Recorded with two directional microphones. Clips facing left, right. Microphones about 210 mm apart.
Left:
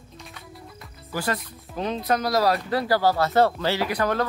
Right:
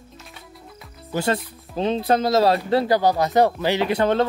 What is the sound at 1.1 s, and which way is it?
Speech, 25° right (ahead or behind).